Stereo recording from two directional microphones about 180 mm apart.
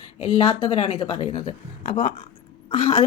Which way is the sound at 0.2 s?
30° left (ahead or behind).